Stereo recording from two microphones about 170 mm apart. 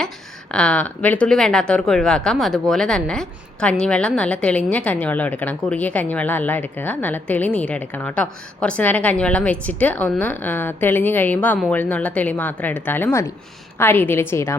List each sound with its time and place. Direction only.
0.5 s speech: 5° left (ahead or behind)